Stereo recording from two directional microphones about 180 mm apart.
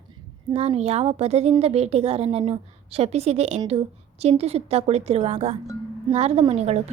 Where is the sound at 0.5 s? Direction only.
35° right (ahead or behind).